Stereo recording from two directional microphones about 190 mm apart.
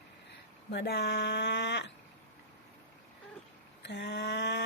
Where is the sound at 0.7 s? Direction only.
60° left (ahead or behind).